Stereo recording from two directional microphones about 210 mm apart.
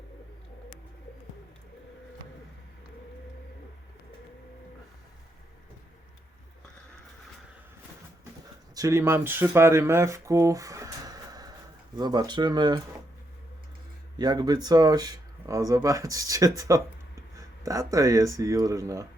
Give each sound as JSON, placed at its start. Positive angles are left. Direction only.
{"t": 8.7, "sound": "speech", "side_deg": -15}
{"t": 14.2, "sound": "speech", "side_deg": -20}